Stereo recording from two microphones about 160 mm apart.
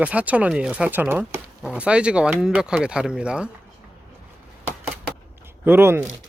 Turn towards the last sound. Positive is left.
turn(degrees=-15)  # may be behind; listen again after turning